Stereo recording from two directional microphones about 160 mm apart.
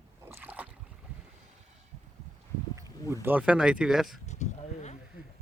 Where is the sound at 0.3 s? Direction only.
10° right (ahead or behind).